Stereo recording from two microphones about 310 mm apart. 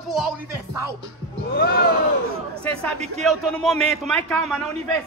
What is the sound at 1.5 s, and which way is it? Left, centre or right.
Speech, left.